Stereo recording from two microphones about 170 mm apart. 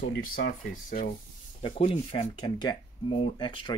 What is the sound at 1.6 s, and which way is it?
Speech, 30° left (ahead or behind).